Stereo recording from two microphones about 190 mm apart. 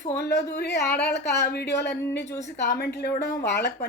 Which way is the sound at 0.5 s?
60° left (ahead or behind).